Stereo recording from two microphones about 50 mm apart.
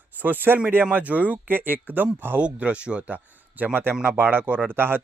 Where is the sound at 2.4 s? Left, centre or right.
Right.